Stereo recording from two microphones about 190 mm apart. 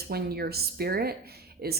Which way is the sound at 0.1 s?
55° right (ahead or behind).